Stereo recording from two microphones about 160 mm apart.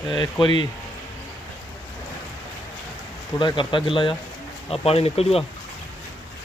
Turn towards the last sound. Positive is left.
turn(degrees=40)  # may be behind; listen again after turning